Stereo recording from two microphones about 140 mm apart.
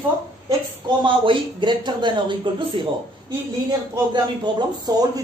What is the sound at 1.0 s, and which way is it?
Speech, 35° right (ahead or behind).